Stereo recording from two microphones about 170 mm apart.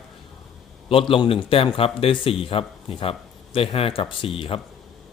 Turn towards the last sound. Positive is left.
turn(degrees=35)  # may be behind; listen again after turning